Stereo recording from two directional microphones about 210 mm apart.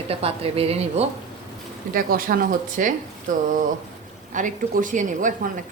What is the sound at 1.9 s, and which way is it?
Speech, 40° right (ahead or behind).